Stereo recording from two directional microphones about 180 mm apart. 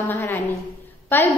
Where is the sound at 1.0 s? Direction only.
10° left (ahead or behind).